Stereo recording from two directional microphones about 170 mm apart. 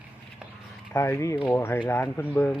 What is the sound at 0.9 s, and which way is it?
Speech, 15° left (ahead or behind).